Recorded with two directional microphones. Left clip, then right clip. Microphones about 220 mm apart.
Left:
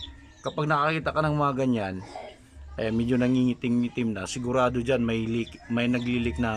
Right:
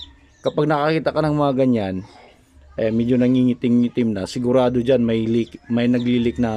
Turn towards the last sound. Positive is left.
turn(degrees=-20)  # may be behind; listen again after turning